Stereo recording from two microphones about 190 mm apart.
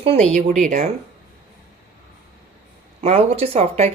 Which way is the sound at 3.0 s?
30° right (ahead or behind).